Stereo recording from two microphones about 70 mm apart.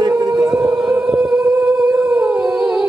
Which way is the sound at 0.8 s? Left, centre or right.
Centre.